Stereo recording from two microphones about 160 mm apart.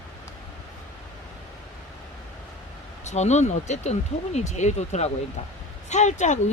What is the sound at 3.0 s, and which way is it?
Speech, 45° left (ahead or behind).